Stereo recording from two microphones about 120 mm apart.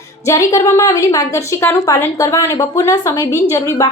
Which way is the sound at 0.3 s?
25° left (ahead or behind).